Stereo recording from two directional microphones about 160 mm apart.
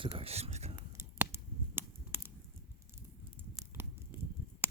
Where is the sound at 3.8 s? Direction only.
15° right (ahead or behind).